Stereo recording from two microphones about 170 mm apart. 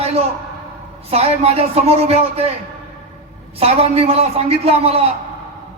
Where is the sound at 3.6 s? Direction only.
35° right (ahead or behind).